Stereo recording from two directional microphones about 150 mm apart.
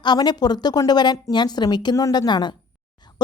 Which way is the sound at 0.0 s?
30° left (ahead or behind).